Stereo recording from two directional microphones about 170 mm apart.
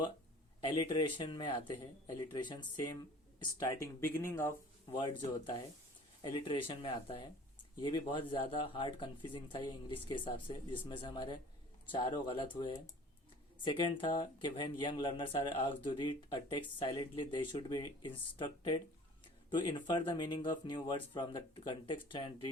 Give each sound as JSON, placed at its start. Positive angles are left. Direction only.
{"t": 0.6, "sound": "speech", "side_deg": 25}